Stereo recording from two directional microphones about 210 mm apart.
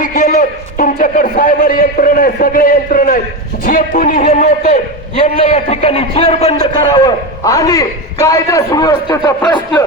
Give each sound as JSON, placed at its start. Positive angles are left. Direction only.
{"t": 0.0, "sound": "a man's voice", "side_deg": 40}